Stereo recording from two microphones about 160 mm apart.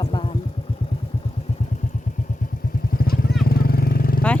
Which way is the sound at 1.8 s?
55° left (ahead or behind).